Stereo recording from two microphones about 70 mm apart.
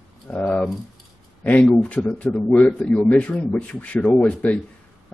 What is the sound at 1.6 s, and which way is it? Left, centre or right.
Speech, centre.